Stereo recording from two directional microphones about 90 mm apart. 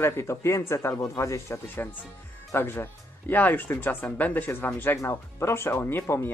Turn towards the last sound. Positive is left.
turn(degrees=25)  # may be behind; listen again after turning